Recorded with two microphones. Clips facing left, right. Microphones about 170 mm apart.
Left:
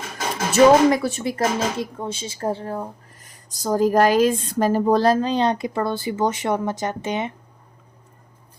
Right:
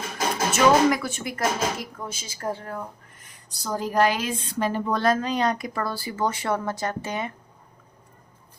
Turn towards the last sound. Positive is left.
turn(degrees=20)  # may be behind; listen again after turning